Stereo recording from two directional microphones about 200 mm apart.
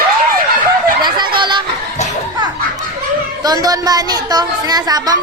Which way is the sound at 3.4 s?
20° right (ahead or behind).